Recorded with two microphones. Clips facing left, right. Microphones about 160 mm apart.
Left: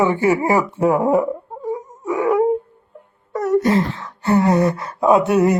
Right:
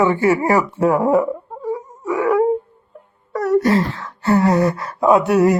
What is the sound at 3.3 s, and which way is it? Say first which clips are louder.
Speech: right 1 dB; 20° left (ahead or behind).